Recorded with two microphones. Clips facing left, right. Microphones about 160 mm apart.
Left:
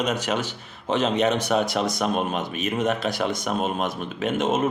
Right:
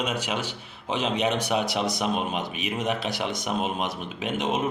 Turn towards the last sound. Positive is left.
turn(degrees=45)  # may be behind; listen again after turning